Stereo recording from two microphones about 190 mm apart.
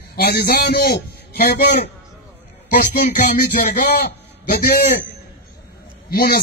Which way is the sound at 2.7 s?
50° left (ahead or behind).